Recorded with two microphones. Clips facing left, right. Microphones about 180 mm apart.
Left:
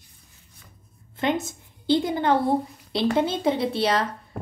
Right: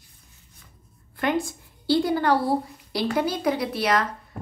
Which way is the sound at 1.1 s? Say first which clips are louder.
Even; 20° left (ahead or behind).